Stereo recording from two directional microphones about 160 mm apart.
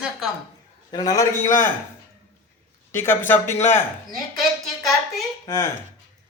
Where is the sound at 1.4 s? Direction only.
55° left (ahead or behind).